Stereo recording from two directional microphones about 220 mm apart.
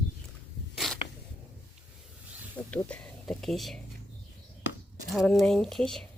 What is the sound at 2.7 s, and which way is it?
Speech, 5° left (ahead or behind).